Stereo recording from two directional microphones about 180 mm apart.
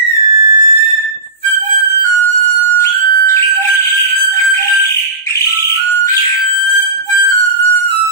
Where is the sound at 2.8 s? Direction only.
20° left (ahead or behind).